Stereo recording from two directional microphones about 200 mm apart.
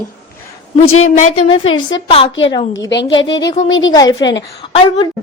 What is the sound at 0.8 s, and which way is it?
Speech, 90° left.